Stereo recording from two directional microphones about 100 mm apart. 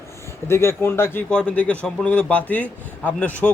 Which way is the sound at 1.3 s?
10° left (ahead or behind).